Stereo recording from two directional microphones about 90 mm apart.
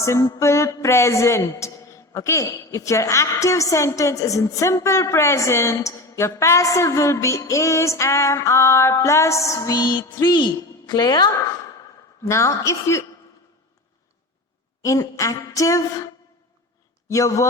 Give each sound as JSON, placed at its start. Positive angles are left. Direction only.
{"t": 0.0, "sound": "speech", "side_deg": 35}
{"t": 12.2, "sound": "speech", "side_deg": 35}
{"t": 14.8, "sound": "speech", "side_deg": 35}
{"t": 17.1, "sound": "speech", "side_deg": 35}